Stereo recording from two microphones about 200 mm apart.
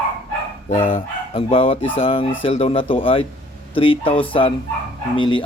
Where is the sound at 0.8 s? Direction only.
30° left (ahead or behind).